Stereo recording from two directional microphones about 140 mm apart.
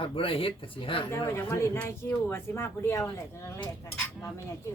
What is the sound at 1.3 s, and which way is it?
Speech, 20° left (ahead or behind).